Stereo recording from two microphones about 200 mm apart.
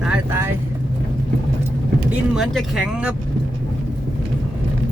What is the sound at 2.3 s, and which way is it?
Speech, centre (ahead or behind).